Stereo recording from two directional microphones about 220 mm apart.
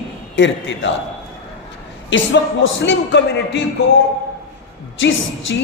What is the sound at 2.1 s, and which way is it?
Music, 55° left (ahead or behind).